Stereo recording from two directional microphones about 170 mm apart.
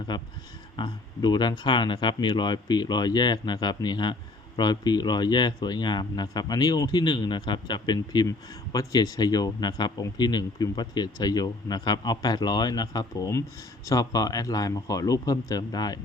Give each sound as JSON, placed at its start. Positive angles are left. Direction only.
{"t": 0.1, "sound": "speech", "side_deg": 25}